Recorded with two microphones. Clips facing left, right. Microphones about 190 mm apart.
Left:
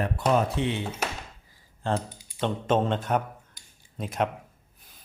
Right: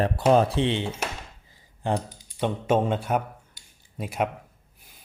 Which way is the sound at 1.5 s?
15° right (ahead or behind).